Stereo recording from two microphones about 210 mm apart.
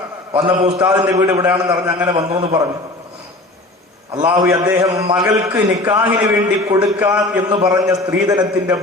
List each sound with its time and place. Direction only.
0.3 s a man's voice: 20° right (ahead or behind)
4.4 s a man's voice: 15° right (ahead or behind)